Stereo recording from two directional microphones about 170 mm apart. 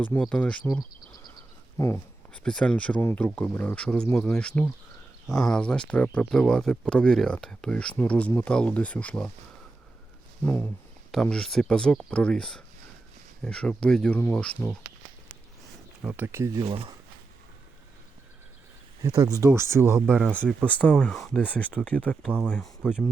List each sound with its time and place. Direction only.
0.2 s speech: 5° left (ahead or behind)
1.8 s a sound: 15° left (ahead or behind)
2.4 s speech: 5° left (ahead or behind)
10.4 s speech: 10° left (ahead or behind)
16.0 s speech: 10° right (ahead or behind); by 16.9 s 30° right (ahead or behind)
19.0 s speech: 20° right (ahead or behind)
20.7 s speech: 10° left (ahead or behind)
22.8 s speech: 5° right (ahead or behind)